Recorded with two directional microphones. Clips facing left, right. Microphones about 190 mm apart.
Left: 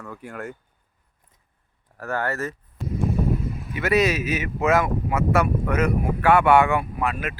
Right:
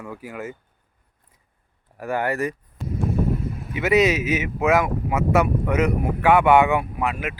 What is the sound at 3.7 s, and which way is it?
Speech, 20° right (ahead or behind).